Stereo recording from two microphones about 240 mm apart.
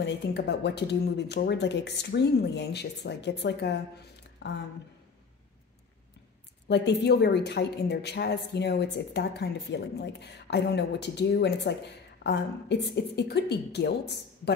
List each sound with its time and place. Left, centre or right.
0.0 s speech: left
6.7 s speech: left